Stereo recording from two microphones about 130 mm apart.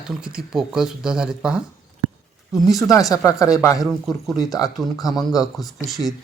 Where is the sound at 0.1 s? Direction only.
5° right (ahead or behind).